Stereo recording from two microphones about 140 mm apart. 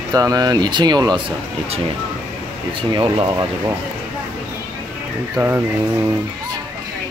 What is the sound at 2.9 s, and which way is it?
Speech, 35° right (ahead or behind).